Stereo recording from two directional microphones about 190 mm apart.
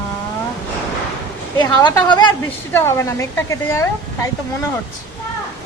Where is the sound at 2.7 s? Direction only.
15° left (ahead or behind).